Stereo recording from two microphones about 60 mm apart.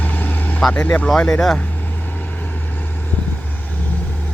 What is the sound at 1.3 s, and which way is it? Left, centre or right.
Speech, centre.